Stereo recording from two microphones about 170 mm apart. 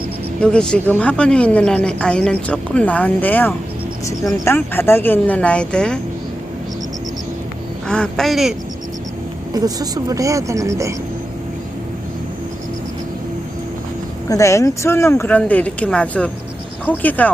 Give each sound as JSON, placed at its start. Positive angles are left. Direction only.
{"t": 0.3, "sound": "speech", "side_deg": 5}
{"t": 7.9, "sound": "speech", "side_deg": 5}
{"t": 9.5, "sound": "a woman's voice", "side_deg": -20}
{"t": 14.3, "sound": "speech", "side_deg": 20}